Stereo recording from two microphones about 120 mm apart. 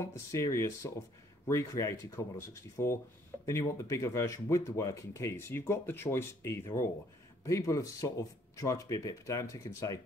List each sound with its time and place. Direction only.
0.0 s speech: 25° left (ahead or behind)